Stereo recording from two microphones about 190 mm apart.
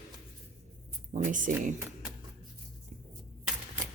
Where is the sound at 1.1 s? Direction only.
45° right (ahead or behind).